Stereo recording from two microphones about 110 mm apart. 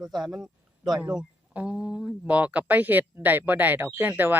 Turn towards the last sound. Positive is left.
turn(degrees=-15)  # may be behind; listen again after turning